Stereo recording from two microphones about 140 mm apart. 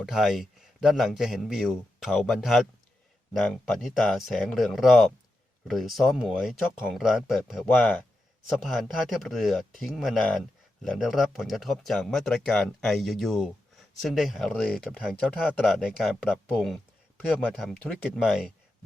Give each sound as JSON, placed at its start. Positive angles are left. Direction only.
{"t": 0.0, "sound": "speech", "side_deg": 0}